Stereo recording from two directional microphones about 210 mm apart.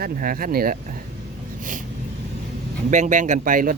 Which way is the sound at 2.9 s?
35° right (ahead or behind).